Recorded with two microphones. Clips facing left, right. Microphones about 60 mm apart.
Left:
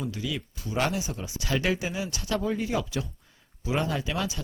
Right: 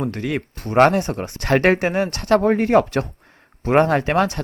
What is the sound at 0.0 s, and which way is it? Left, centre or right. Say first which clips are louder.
Speech: right 9 dB; right.